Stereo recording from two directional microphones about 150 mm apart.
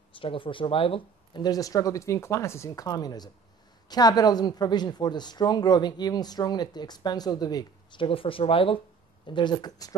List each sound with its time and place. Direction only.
0.2 s speech: 35° left (ahead or behind)